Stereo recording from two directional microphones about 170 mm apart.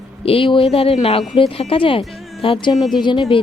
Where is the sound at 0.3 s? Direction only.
30° left (ahead or behind).